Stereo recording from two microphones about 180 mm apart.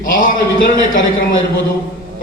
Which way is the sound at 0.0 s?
50° left (ahead or behind).